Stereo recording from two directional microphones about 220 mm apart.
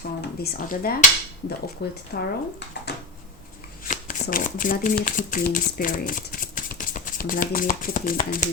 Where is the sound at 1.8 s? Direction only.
50° left (ahead or behind).